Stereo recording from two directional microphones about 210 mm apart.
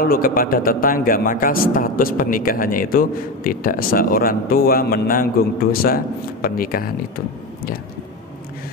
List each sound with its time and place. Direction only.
0.0 s a man's voice: 45° left (ahead or behind)